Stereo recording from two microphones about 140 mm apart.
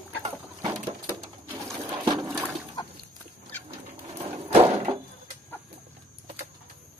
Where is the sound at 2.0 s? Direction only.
30° right (ahead or behind).